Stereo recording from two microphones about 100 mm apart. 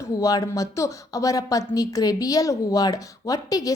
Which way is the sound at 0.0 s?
35° left (ahead or behind).